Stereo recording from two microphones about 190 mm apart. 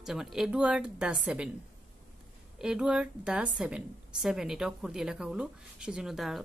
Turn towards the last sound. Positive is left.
turn(degrees=0)  # may be behind; listen again after turning